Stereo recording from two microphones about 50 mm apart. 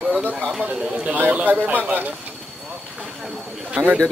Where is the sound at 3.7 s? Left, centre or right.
Right.